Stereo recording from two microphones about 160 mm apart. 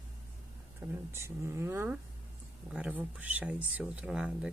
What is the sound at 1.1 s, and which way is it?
Speech, 15° right (ahead or behind).